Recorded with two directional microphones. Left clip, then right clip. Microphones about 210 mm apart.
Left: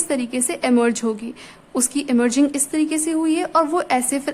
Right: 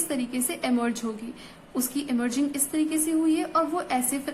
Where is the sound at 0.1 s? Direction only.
30° left (ahead or behind).